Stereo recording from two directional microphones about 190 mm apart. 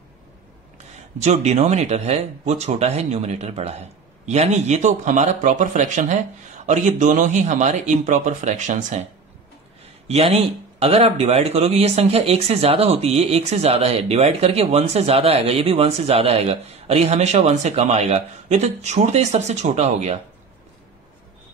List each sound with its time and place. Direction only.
1.2 s speech: 35° right (ahead or behind)
10.0 s speech: 35° right (ahead or behind)